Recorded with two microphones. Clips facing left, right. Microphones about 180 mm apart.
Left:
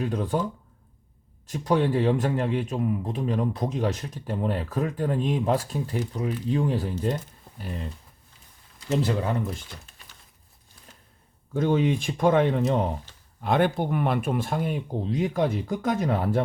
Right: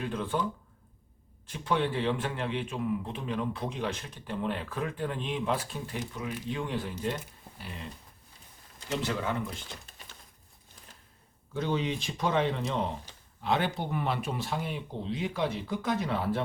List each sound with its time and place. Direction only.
0.0 s speech: 40° left (ahead or behind)
1.5 s speech: 40° left (ahead or behind)
8.9 s speech: 35° left (ahead or behind)
11.5 s speech: 50° left (ahead or behind)